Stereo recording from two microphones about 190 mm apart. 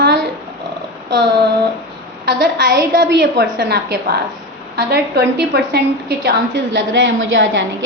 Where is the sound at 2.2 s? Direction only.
60° right (ahead or behind).